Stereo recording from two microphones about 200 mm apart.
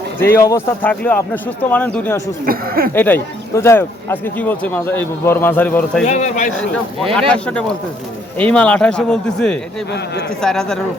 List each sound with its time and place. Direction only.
0.2 s speech: 15° left (ahead or behind)
2.5 s speech: 45° right (ahead or behind)
2.9 s speech: 10° left (ahead or behind)
6.1 s speech: 35° left (ahead or behind)
6.6 s speech: centre (ahead or behind)